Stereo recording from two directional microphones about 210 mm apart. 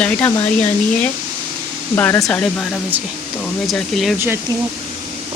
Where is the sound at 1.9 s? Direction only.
10° left (ahead or behind).